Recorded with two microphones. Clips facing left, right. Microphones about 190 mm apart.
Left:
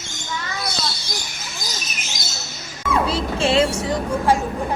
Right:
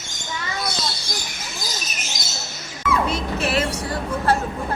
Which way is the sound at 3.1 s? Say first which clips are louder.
Left 3 dB; 30° left (ahead or behind).